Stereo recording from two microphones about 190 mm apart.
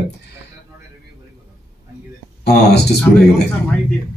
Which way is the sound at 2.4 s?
60° left (ahead or behind).